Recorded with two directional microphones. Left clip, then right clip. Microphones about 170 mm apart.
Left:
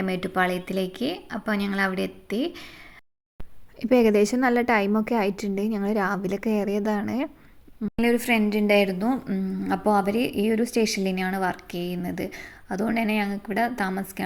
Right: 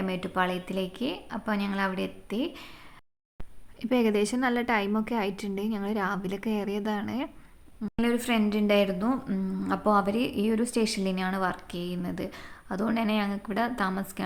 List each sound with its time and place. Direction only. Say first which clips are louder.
0.0 s a woman's voice: left 4 dB; 20° left (ahead or behind)
3.8 s a woman's voice: left 7 dB; 15° left (ahead or behind)